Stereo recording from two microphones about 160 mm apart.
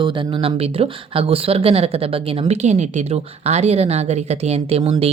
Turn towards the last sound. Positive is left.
turn(degrees=-40)  # may be behind; listen again after turning